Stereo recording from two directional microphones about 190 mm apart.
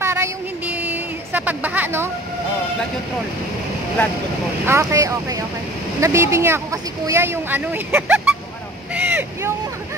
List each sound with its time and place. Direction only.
0.0 s a sound: 15° right (ahead or behind)
4.6 s speech: 15° right (ahead or behind)
8.9 s vehicle: 10° right (ahead or behind)